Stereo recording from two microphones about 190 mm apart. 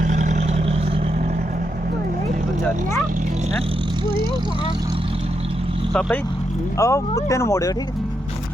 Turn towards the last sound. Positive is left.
turn(degrees=15)  # may be behind; listen again after turning